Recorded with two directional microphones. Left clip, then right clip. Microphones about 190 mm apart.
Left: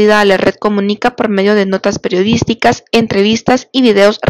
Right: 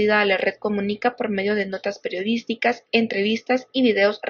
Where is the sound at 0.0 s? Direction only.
50° left (ahead or behind).